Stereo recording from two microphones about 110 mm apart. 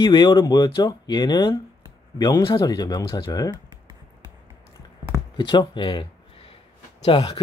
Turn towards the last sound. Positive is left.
turn(degrees=60)  # may be behind; listen again after turning